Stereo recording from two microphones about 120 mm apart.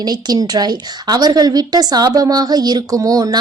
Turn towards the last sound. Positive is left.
turn(degrees=-30)  # may be behind; listen again after turning